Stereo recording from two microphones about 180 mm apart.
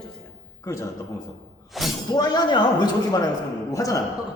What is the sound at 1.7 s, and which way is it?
Shatter, centre (ahead or behind).